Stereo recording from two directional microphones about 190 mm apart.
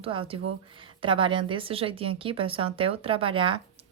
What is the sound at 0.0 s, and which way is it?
A woman's voice, 30° right (ahead or behind).